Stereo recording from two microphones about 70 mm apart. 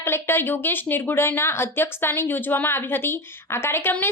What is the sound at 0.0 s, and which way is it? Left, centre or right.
A woman's voice, left.